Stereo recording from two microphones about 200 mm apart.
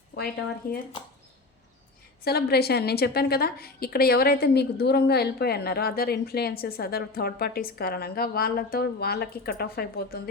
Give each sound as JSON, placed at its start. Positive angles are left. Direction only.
{"t": 0.6, "sound": "a woman's voice", "side_deg": 50}
{"t": 2.2, "sound": "a woman's voice", "side_deg": 50}